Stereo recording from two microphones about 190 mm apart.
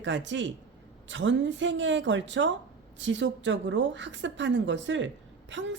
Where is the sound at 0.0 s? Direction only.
75° right (ahead or behind).